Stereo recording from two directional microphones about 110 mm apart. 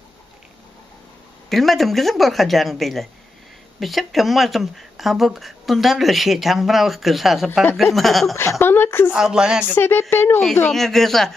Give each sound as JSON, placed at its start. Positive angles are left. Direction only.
{"t": 1.5, "sound": "speech", "side_deg": 0}
{"t": 8.4, "sound": "a woman's voice", "side_deg": 20}
{"t": 9.1, "sound": "speech", "side_deg": -5}
{"t": 9.7, "sound": "a woman's voice", "side_deg": 20}
{"t": 10.7, "sound": "speech", "side_deg": 5}